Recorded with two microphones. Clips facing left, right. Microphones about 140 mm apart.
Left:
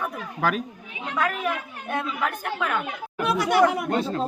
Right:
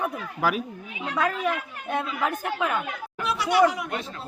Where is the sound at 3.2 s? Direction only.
50° left (ahead or behind).